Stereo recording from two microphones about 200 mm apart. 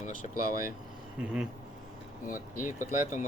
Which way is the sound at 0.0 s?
40° left (ahead or behind).